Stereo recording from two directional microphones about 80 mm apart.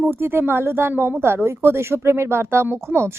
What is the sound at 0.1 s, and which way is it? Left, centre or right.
Speech, right.